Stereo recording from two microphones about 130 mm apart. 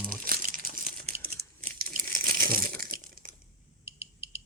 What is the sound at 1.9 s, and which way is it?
Crumpling, 90° right.